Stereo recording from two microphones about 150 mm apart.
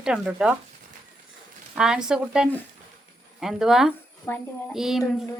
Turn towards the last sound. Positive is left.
turn(degrees=0)  # may be behind; listen again after turning